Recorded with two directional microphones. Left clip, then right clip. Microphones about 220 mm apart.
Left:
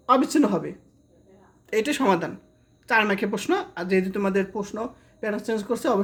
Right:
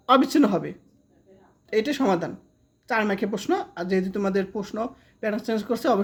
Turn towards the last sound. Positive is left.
turn(degrees=-15)  # may be behind; listen again after turning